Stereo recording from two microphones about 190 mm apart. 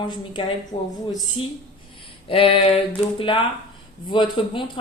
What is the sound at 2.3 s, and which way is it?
Speech, 30° left (ahead or behind).